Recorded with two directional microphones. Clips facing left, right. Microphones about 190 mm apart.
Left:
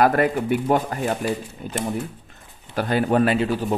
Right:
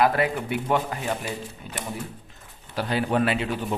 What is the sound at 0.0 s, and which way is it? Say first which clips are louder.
Speech: left 4 dB; 45° left (ahead or behind).